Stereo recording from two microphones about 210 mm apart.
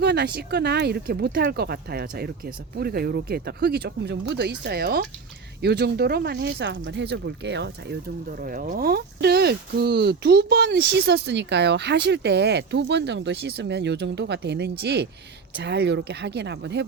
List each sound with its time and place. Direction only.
0.0 s speech: 55° right (ahead or behind)